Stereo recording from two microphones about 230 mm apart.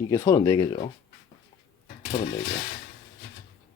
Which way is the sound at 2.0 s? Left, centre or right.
Left.